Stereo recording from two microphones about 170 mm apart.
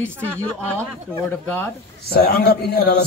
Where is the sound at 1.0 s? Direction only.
10° left (ahead or behind).